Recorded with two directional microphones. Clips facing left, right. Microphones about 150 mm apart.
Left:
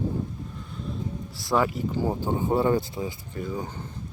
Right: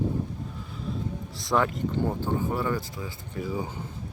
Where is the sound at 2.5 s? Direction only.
25° left (ahead or behind).